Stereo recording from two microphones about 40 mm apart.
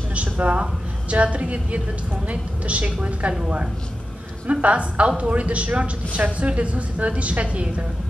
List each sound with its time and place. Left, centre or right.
0.1 s a sound: right
1.1 s a woman's voice: right
4.5 s a woman's voice: right